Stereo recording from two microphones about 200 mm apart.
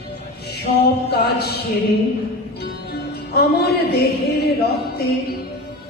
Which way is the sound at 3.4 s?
55° left (ahead or behind).